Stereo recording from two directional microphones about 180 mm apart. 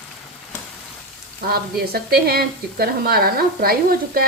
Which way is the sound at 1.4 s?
60° right (ahead or behind).